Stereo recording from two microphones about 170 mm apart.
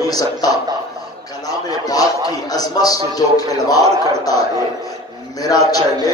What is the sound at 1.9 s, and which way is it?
A man's voice, 20° left (ahead or behind).